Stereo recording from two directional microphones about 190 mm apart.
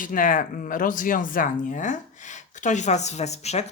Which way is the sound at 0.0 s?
45° left (ahead or behind).